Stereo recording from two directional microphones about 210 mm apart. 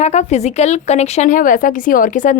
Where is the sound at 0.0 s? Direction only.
30° left (ahead or behind).